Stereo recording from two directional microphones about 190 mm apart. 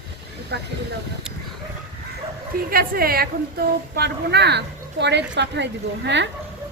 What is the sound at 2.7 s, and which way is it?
A woman's voice, 50° right (ahead or behind).